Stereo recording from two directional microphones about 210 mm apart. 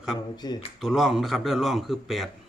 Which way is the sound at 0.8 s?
Centre (ahead or behind).